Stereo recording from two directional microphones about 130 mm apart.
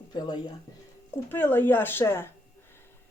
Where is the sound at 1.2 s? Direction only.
15° left (ahead or behind).